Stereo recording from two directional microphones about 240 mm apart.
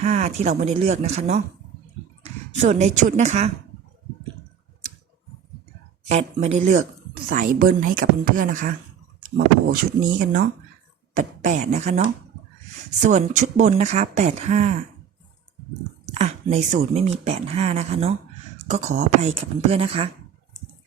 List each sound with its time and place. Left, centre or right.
0.0 s speech: right
6.1 s speech: right
16.0 s speech: right